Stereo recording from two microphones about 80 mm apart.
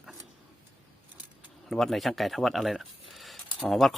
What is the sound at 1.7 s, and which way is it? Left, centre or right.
Speech, centre.